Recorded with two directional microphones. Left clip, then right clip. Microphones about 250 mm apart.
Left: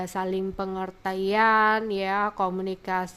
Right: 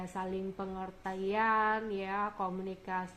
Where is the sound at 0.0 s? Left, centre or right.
Left.